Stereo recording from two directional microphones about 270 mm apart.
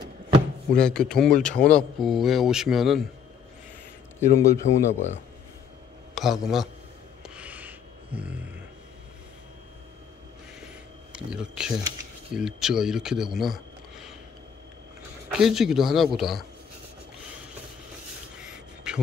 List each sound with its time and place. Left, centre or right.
0.7 s speech: centre
4.2 s speech: centre
6.1 s speech: centre
7.2 s a sound: centre
11.1 s a man's voice: centre
15.2 s speech: centre
18.4 s a sound: centre